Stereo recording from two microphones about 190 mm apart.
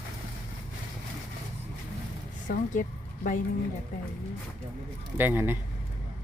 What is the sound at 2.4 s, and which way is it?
Speech, 45° left (ahead or behind).